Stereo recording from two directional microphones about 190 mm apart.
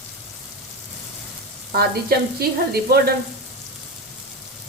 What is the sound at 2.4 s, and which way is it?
Frying, 55° right (ahead or behind).